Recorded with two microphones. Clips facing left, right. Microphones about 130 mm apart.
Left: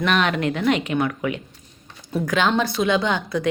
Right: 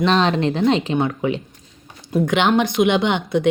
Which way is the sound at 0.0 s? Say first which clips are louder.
Right 4 dB; 30° right (ahead or behind).